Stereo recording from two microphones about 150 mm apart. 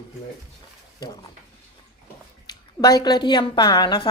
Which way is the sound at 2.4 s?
25° left (ahead or behind).